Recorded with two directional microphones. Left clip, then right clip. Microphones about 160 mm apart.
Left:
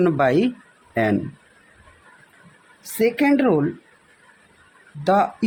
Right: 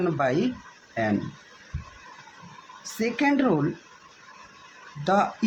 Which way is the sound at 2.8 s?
55° left (ahead or behind).